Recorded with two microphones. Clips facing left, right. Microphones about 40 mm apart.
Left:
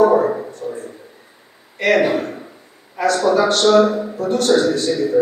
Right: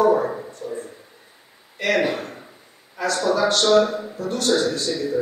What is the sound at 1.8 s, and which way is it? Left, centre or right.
Speech, left.